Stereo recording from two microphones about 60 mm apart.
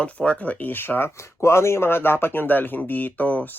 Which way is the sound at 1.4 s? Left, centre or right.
Left.